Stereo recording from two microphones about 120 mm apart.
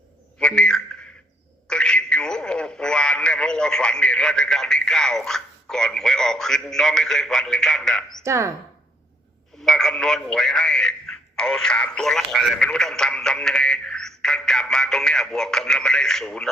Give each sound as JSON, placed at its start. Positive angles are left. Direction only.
{"t": 0.3, "sound": "a sound", "side_deg": 5}
{"t": 1.6, "sound": "speech", "side_deg": 5}
{"t": 8.2, "sound": "speech", "side_deg": -25}
{"t": 9.6, "sound": "speech", "side_deg": 5}